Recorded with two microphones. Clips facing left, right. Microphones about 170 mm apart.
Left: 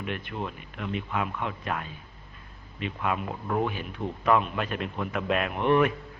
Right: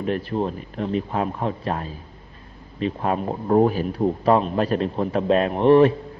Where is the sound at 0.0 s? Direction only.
35° right (ahead or behind).